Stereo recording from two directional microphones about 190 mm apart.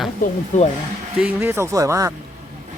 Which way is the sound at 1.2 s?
10° right (ahead or behind).